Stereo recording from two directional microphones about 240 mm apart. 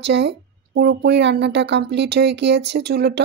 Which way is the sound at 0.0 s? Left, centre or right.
Right.